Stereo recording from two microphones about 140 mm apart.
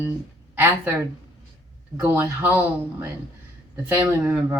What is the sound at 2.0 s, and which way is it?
Speech, 15° right (ahead or behind).